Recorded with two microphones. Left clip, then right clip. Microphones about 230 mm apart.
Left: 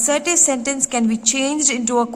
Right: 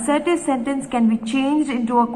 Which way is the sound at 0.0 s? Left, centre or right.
Left.